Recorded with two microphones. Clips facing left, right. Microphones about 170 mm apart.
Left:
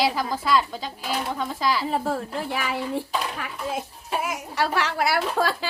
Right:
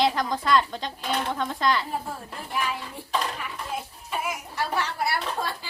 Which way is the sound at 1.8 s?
90° left.